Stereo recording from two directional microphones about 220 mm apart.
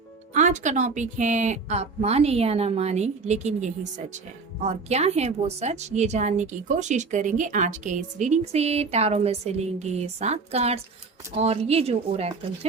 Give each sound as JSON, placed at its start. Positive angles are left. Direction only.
{"t": 0.3, "sound": "speech", "side_deg": -35}